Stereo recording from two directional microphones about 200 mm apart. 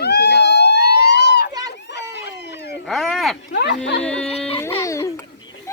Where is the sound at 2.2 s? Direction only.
60° left (ahead or behind).